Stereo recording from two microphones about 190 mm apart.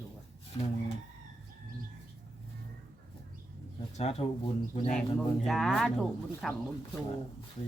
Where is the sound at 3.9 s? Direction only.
35° left (ahead or behind).